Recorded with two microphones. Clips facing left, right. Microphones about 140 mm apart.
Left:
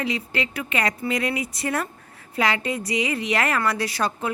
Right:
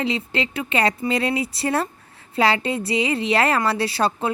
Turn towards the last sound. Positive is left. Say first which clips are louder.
# right 4 dB
turn(degrees=-30)  # may be behind; listen again after turning